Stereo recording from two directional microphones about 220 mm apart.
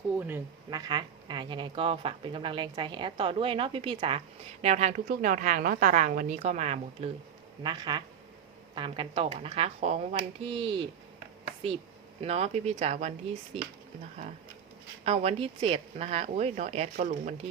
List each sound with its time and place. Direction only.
0.2 s a woman's voice: 10° right (ahead or behind)
12.2 s speech: 30° right (ahead or behind)
15.0 s speech: 30° right (ahead or behind)